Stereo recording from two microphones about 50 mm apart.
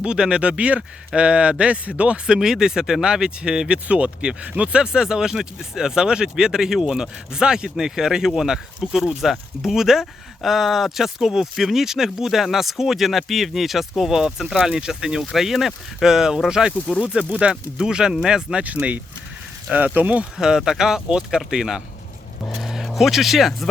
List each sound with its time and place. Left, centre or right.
0.0 s speech: centre
2.2 s speech: centre
15.2 s speech: centre
18.6 s speech: right
20.6 s speech: centre